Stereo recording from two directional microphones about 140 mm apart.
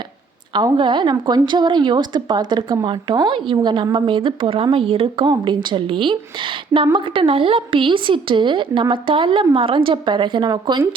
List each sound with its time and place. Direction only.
0.5 s a woman's voice: 35° right (ahead or behind)